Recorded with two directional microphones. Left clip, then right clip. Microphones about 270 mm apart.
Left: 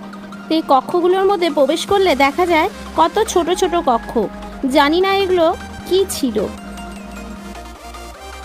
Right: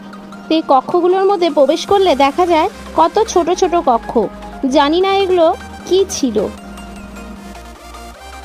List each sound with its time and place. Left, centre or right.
0.4 s speech: centre